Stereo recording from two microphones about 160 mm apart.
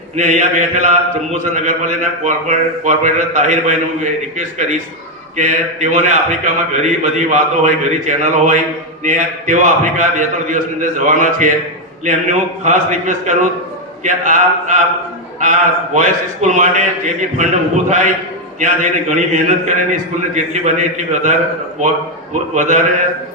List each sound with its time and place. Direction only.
0.2 s a man's voice: 50° right (ahead or behind)
16.0 s a man's voice: 50° right (ahead or behind)
22.5 s a man's voice: 50° right (ahead or behind)